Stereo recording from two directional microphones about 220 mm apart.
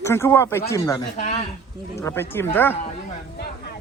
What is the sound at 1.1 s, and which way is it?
Speech, 30° left (ahead or behind).